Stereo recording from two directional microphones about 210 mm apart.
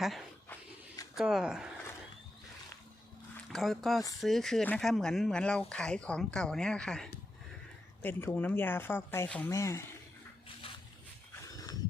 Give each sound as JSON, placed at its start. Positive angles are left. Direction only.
{"t": 0.0, "sound": "dog", "side_deg": 5}
{"t": 1.1, "sound": "speech", "side_deg": 0}
{"t": 3.5, "sound": "speech", "side_deg": 0}
{"t": 11.4, "sound": "a sound", "side_deg": 15}